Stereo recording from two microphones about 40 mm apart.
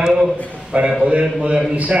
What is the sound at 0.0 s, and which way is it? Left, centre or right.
Speech, centre.